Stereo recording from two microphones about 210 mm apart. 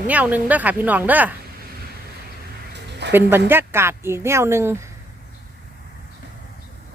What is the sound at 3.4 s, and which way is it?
Speech, 10° right (ahead or behind).